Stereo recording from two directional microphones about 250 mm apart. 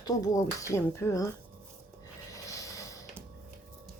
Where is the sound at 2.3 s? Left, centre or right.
Centre.